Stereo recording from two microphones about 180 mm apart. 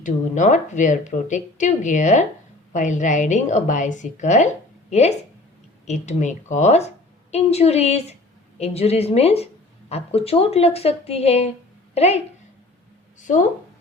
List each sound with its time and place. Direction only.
0.0 s a woman's voice: 45° left (ahead or behind)